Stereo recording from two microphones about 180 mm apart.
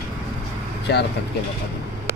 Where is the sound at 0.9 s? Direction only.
65° left (ahead or behind).